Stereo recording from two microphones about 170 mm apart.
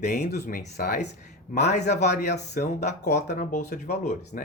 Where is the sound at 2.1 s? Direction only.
70° left (ahead or behind).